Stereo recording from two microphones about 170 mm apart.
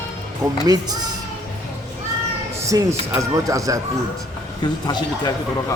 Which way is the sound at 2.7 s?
20° right (ahead or behind).